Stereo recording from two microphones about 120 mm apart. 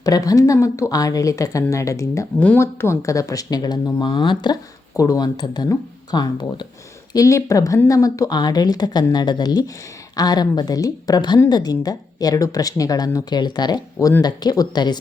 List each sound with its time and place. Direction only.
0.0 s speech: 30° left (ahead or behind)